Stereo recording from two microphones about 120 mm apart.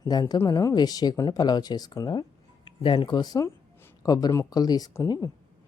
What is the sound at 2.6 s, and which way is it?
Speech, 45° left (ahead or behind).